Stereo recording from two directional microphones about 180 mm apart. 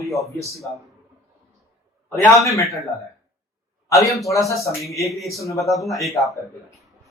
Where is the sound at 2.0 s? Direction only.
15° left (ahead or behind).